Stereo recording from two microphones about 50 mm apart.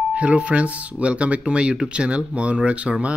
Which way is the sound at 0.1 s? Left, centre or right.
Right.